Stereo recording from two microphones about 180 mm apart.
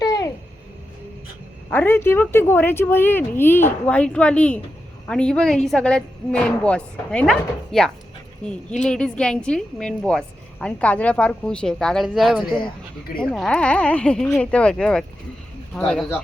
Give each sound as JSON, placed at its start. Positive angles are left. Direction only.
{"t": 0.0, "sound": "babbling", "side_deg": 20}
{"t": 1.7, "sound": "a woman's voice", "side_deg": 10}